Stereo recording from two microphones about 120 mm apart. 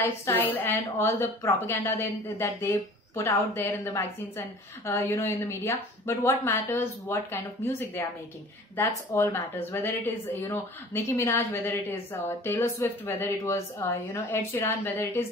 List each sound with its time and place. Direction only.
0.0 s a woman's voice: 20° left (ahead or behind)